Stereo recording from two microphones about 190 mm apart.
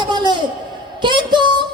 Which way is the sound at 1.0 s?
25° right (ahead or behind).